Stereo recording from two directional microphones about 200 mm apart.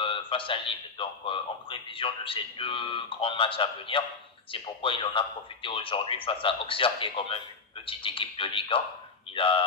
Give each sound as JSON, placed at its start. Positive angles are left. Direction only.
{"t": 0.0, "sound": "a man's voice", "side_deg": 25}